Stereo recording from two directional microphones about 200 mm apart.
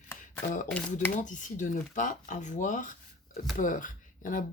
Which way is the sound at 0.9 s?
40° left (ahead or behind).